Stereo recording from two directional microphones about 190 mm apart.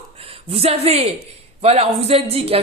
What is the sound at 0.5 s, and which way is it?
A woman's voice, 30° right (ahead or behind).